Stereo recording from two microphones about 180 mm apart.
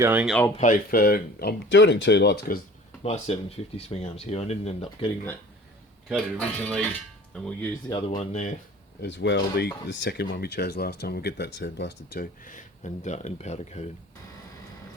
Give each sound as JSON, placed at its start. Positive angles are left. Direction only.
{"t": 0.0, "sound": "speech", "side_deg": -10}
{"t": 0.5, "sound": "speech", "side_deg": 45}
{"t": 3.0, "sound": "speech", "side_deg": 35}
{"t": 6.1, "sound": "speech", "side_deg": 5}
{"t": 7.9, "sound": "speech", "side_deg": 25}
{"t": 8.2, "sound": "speech", "side_deg": 40}
{"t": 9.0, "sound": "speech", "side_deg": 75}